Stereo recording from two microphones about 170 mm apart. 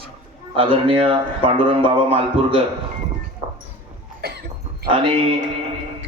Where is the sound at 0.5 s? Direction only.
30° right (ahead or behind).